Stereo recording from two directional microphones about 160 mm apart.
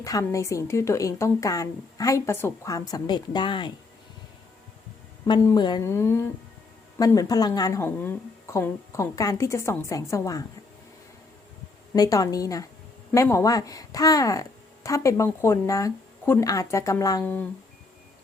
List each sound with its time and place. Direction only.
0.0 s speech: 20° left (ahead or behind)
5.2 s speech: 25° left (ahead or behind)
5.8 s speech: 15° left (ahead or behind)
11.9 s speech: 20° left (ahead or behind)
17.2 s speech: 10° left (ahead or behind)